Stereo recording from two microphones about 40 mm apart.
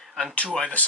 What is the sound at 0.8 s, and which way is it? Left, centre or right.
Speech, left.